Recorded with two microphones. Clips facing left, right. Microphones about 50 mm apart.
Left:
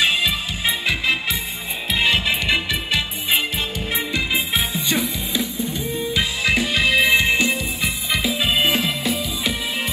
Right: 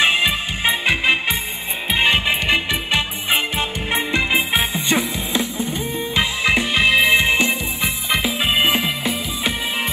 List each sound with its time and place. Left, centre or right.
0.0 s music: right
0.7 s music: right
3.3 s music: right
5.6 s music: right
6.4 s music: centre
8.3 s music: centre